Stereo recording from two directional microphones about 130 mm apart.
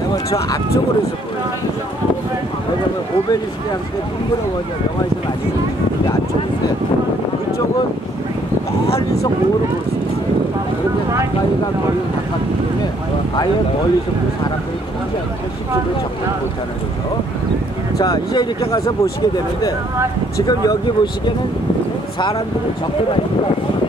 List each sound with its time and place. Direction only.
0.1 s speech: 30° left (ahead or behind)
17.9 s speech: 30° left (ahead or behind)